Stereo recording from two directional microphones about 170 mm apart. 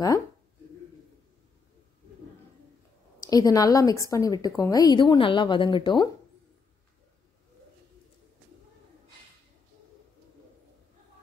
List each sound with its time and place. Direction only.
3.2 s a woman's voice: 20° left (ahead or behind)